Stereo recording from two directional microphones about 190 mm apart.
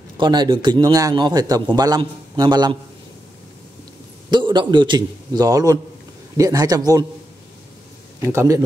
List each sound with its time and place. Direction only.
0.2 s a man's voice: 25° right (ahead or behind)
4.3 s a man's voice: 25° right (ahead or behind)
8.2 s a man's voice: 15° right (ahead or behind)